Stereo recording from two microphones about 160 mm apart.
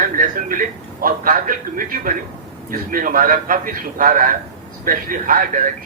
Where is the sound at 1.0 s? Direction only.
60° right (ahead or behind).